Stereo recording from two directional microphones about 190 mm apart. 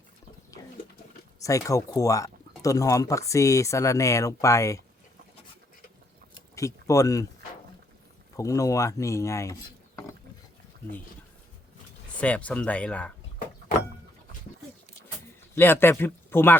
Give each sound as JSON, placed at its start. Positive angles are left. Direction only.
{"t": 1.4, "sound": "speech", "side_deg": 15}
{"t": 6.6, "sound": "speech", "side_deg": 15}
{"t": 8.4, "sound": "speech", "side_deg": 15}
{"t": 12.2, "sound": "speech", "side_deg": 5}
{"t": 15.5, "sound": "speech", "side_deg": 10}